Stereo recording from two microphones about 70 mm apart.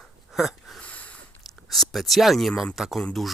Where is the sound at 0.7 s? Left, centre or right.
Centre.